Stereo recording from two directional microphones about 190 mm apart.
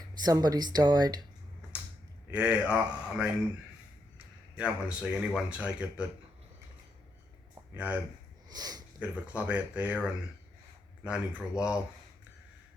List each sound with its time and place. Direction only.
0.2 s speech: 20° right (ahead or behind)
2.3 s speech: 5° right (ahead or behind)
4.5 s speech: 5° right (ahead or behind)
7.5 s a sound: 10° right (ahead or behind)
8.4 s speech: 20° right (ahead or behind)
9.0 s speech: 5° right (ahead or behind)